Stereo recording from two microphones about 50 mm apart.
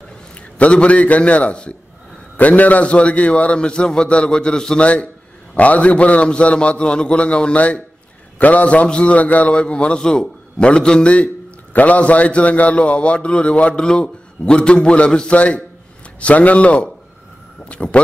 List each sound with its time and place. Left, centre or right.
0.6 s a man's voice: left
5.6 s a man's voice: left